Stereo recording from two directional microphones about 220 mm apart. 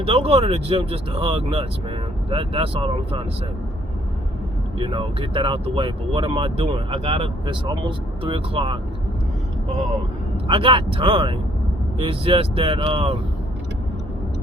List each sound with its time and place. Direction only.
0.0 s speech: 25° right (ahead or behind)
4.8 s speech: 20° right (ahead or behind)
10.4 s speech: 25° right (ahead or behind)